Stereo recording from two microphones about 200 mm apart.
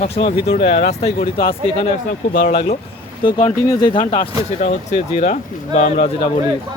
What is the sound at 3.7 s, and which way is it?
Speech, 20° left (ahead or behind).